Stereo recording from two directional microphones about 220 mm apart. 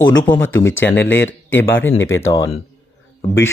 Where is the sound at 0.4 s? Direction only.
60° left (ahead or behind).